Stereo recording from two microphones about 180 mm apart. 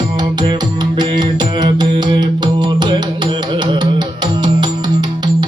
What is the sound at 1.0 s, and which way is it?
Music, 25° right (ahead or behind).